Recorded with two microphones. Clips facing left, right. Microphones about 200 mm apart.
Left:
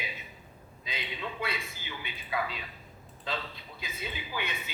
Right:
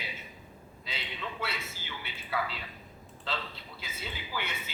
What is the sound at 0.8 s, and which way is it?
A man's voice, 15° left (ahead or behind).